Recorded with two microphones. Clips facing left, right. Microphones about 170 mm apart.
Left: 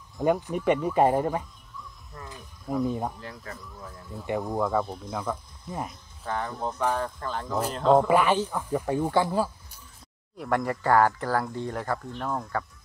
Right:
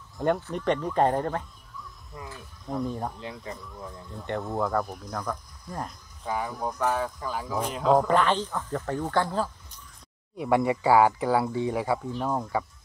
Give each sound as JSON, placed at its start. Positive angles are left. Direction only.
{"t": 0.4, "sound": "speech", "side_deg": 10}
{"t": 2.1, "sound": "speech", "side_deg": 0}
{"t": 3.2, "sound": "speech", "side_deg": -20}
{"t": 4.1, "sound": "speech", "side_deg": 10}
{"t": 4.6, "sound": "speech", "side_deg": 0}
{"t": 6.2, "sound": "speech", "side_deg": -10}
{"t": 10.3, "sound": "speech", "side_deg": -5}